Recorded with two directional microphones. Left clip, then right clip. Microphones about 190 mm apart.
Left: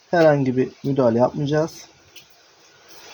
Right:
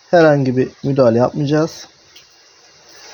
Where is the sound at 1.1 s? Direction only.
45° right (ahead or behind).